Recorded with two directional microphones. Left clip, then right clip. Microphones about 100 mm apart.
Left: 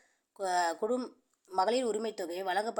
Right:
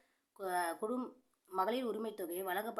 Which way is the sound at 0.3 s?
45° left (ahead or behind).